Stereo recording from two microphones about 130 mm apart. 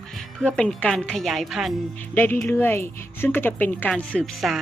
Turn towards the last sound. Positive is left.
turn(degrees=0)  # may be behind; listen again after turning